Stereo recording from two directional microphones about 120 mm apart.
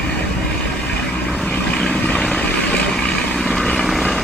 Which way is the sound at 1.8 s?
5° left (ahead or behind).